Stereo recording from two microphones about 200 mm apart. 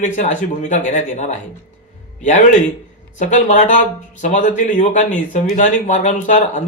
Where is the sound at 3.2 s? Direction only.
40° left (ahead or behind).